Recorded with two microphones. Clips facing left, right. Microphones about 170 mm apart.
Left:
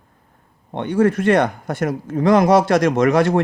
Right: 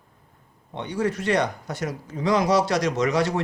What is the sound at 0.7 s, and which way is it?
Speech, 55° left (ahead or behind).